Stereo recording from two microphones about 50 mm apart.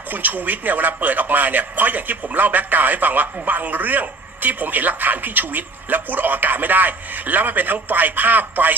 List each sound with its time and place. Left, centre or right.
0.1 s speech: right